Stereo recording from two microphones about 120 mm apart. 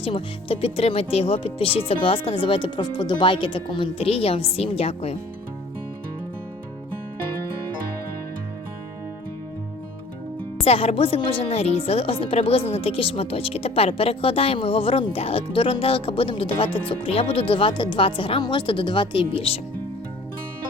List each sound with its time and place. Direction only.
0.0 s a woman's voice: 50° left (ahead or behind)
10.6 s a woman's voice: 55° left (ahead or behind)